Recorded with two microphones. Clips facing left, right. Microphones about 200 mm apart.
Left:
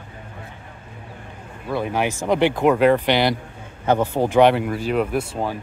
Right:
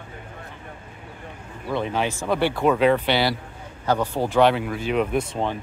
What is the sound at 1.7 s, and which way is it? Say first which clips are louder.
Speech: left 2 dB; 10° left (ahead or behind).